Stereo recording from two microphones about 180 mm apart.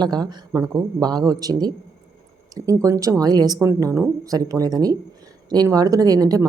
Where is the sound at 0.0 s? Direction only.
25° right (ahead or behind).